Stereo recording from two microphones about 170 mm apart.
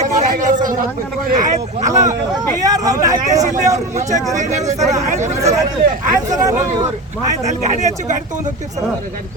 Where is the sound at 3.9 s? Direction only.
45° right (ahead or behind).